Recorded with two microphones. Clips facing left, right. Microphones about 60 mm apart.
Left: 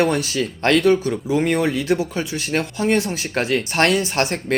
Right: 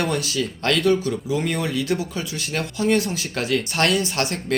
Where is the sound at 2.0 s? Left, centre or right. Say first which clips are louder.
Left 4 dB; left.